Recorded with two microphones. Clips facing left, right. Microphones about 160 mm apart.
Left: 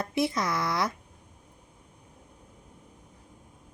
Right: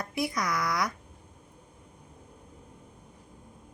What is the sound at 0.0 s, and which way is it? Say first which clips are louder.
Speech: left 3 dB; 25° left (ahead or behind).